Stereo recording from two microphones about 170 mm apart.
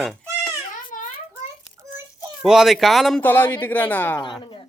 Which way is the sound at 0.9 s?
50° left (ahead or behind).